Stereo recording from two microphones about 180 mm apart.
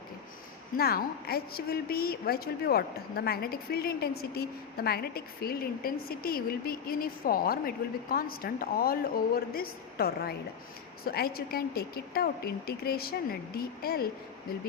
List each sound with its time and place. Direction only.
0.8 s a woman's voice: 60° left (ahead or behind)